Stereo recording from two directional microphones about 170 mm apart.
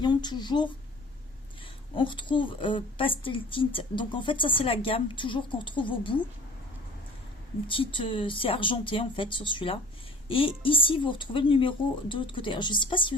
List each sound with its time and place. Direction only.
0.0 s speech: 25° left (ahead or behind)
2.0 s speech: 30° left (ahead or behind)
7.7 s speech: 30° left (ahead or behind)